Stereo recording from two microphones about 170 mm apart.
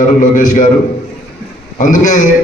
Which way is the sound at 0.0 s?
50° left (ahead or behind).